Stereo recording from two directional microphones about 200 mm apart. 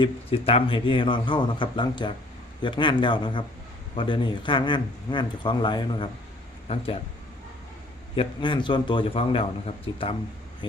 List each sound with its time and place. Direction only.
0.0 s a man's voice: 30° left (ahead or behind)
8.1 s a man's voice: 25° left (ahead or behind)